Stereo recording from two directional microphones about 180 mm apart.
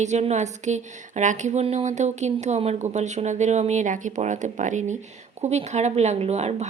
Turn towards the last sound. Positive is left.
turn(degrees=-40)  # may be behind; listen again after turning